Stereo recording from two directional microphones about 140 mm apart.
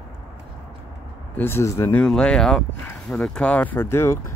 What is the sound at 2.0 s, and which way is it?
Speech, 5° left (ahead or behind).